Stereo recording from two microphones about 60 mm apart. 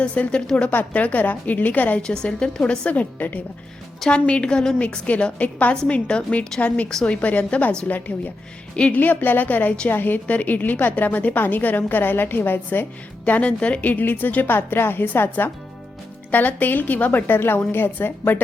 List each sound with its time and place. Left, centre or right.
0.0 s a woman's voice: left
2.0 s a woman's voice: centre
4.8 s a woman's voice: left
9.0 s a woman's voice: left